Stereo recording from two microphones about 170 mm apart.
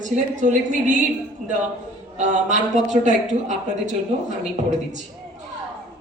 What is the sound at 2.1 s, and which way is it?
A woman's voice, 45° right (ahead or behind).